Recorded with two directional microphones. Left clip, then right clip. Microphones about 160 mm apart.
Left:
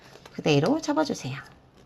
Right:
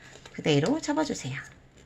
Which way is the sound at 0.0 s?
20° left (ahead or behind).